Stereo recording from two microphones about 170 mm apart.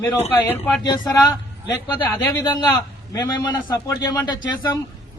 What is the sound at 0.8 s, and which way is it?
Speech, 25° left (ahead or behind).